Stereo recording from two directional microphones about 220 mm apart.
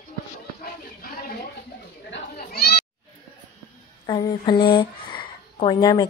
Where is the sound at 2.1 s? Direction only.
45° left (ahead or behind).